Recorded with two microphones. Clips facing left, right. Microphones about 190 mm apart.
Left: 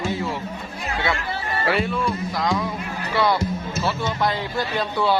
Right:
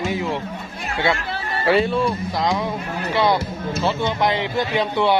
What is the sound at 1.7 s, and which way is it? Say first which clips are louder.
A man's voice: right 6 dB; 25° right (ahead or behind).